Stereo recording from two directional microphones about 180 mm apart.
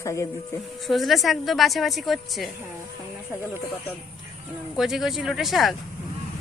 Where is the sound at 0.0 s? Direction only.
15° left (ahead or behind).